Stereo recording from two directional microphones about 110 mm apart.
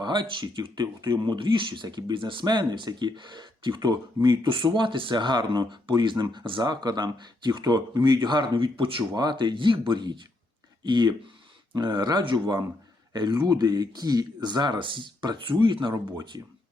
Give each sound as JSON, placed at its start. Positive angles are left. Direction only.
{"t": 0.0, "sound": "speech", "side_deg": -45}
{"t": 16.3, "sound": "speech", "side_deg": -35}